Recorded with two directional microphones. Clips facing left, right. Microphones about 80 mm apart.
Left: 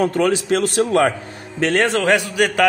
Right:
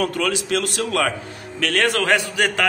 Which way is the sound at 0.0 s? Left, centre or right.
Left.